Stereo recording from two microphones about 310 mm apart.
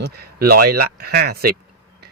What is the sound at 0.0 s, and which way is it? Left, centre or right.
Speech, right.